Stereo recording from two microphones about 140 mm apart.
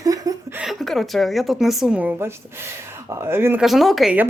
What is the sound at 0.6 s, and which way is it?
A woman's voice, centre (ahead or behind).